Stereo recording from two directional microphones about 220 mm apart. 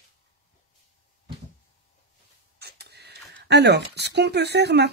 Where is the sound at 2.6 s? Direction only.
50° right (ahead or behind).